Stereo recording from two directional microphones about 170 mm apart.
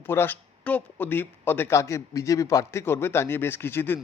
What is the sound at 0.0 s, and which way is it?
Speech, 15° left (ahead or behind).